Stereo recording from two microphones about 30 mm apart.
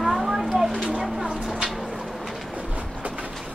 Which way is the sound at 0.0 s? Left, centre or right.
Centre.